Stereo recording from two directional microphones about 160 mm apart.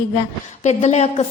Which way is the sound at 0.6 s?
45° left (ahead or behind).